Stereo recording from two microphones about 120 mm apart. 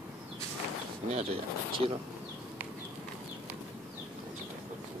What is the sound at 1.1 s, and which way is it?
Speech, 55° right (ahead or behind).